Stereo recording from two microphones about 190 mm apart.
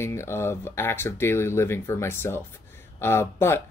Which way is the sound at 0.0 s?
15° left (ahead or behind).